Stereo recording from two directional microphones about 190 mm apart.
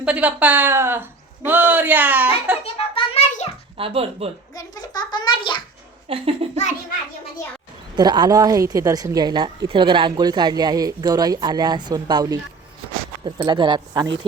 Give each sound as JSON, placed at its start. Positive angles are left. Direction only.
{"t": 0.0, "sound": "speech", "side_deg": -5}
{"t": 2.7, "sound": "a sound", "side_deg": 30}
{"t": 3.8, "sound": "speech", "side_deg": -30}
{"t": 4.5, "sound": "a child's voice", "side_deg": 20}
{"t": 6.1, "sound": "a woman's voice", "side_deg": -30}
{"t": 7.9, "sound": "a woman's voice", "side_deg": -20}